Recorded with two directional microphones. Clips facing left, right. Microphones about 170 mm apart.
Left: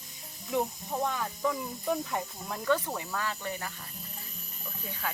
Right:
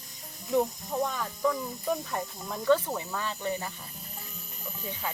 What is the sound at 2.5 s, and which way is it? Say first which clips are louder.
Speech: right 4 dB; 15° right (ahead or behind).